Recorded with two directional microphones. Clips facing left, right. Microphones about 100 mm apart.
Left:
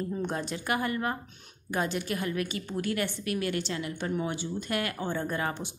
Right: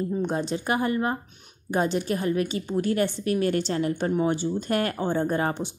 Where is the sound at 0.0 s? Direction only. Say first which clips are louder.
Right 5 dB; 20° right (ahead or behind).